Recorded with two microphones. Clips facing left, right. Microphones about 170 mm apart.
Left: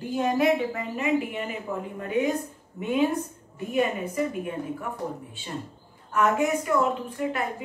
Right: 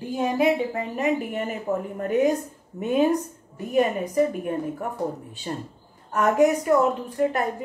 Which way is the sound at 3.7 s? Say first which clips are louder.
Right 5 dB; 40° right (ahead or behind).